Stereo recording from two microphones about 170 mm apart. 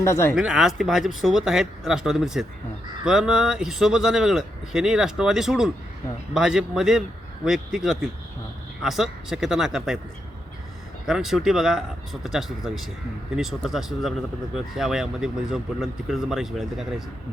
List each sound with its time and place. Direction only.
0.0 s speech: 15° left (ahead or behind)
0.3 s speech: 5° right (ahead or behind)
11.0 s speech: 5° right (ahead or behind)